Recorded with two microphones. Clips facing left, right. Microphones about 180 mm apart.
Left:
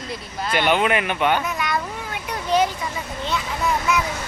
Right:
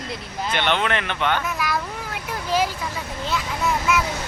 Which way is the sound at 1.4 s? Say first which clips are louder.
Left 1 dB; centre (ahead or behind).